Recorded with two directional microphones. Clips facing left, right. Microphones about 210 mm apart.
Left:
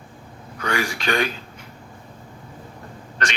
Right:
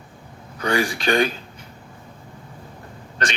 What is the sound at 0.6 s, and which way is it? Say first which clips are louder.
Speech: right 3 dB; 30° right (ahead or behind).